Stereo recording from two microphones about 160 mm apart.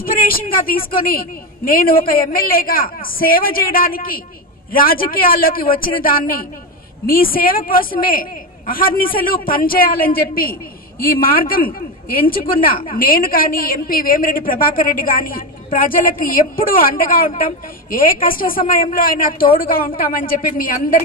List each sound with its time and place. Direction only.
0.0 s a woman's voice: 65° left (ahead or behind)